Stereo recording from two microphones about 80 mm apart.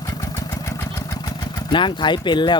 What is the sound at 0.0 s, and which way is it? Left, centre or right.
Engine, left.